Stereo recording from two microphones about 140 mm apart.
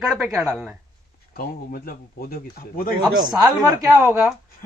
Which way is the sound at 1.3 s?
90° left.